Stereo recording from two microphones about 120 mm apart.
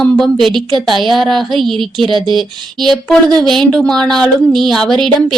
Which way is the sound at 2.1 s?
40° right (ahead or behind).